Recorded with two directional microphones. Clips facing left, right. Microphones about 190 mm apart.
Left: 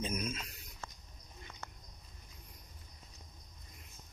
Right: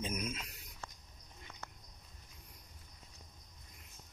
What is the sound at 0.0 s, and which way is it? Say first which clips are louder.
Speech: left 2 dB; 15° right (ahead or behind).